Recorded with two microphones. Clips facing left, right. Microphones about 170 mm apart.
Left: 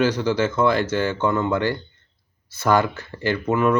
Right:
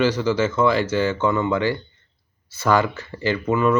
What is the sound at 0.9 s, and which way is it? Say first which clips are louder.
Speech: right 1 dB; 10° right (ahead or behind).